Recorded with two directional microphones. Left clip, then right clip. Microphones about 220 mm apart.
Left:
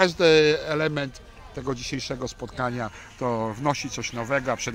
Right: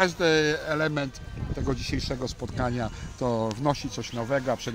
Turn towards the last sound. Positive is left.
turn(degrees=-10)  # may be behind; listen again after turning